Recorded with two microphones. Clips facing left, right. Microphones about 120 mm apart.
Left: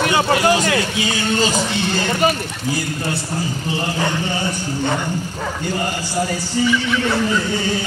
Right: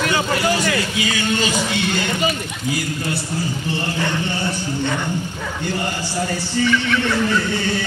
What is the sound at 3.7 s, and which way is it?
Speech, 40° left (ahead or behind).